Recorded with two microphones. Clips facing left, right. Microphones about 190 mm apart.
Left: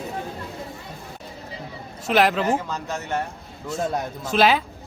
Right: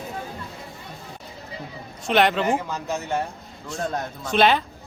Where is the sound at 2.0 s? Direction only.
Centre (ahead or behind).